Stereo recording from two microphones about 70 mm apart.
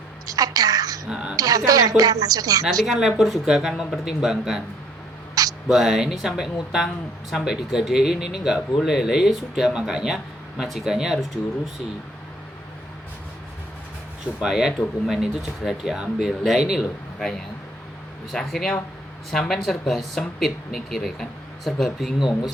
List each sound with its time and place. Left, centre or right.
0.3 s a woman's voice: right
1.1 s speech: centre
1.4 s a woman's voice: right
2.6 s speech: centre
5.3 s a sound: right
5.7 s speech: centre
14.4 s speech: centre
18.3 s speech: centre
22.2 s speech: left